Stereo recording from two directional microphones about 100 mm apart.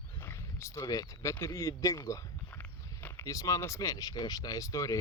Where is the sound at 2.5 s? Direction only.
15° left (ahead or behind).